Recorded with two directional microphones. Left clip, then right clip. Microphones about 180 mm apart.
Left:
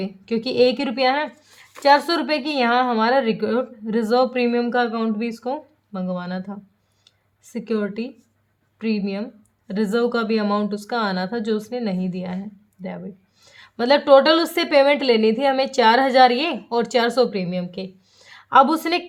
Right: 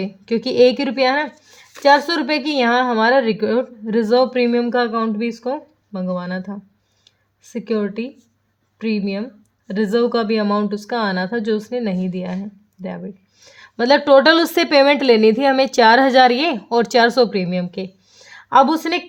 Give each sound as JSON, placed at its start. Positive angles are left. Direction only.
{"t": 0.0, "sound": "a woman's voice", "side_deg": -20}